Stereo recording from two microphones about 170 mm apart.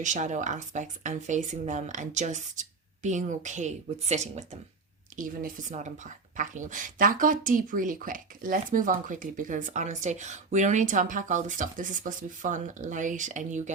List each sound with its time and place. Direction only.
0.0 s speech: 45° right (ahead or behind)